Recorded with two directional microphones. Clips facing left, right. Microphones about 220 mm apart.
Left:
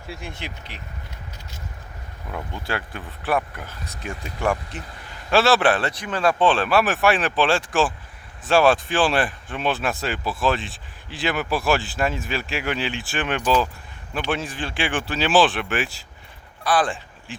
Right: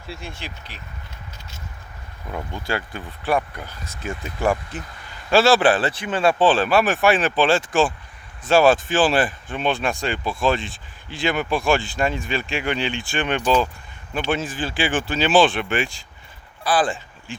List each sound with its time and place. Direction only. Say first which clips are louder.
0.1 s speech: even; 15° left (ahead or behind)
2.3 s speech: right 2 dB; centre (ahead or behind)